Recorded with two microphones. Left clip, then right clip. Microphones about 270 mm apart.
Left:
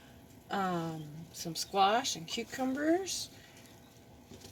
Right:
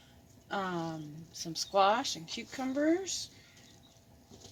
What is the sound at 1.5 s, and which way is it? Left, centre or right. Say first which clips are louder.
Speech: right 1 dB; centre.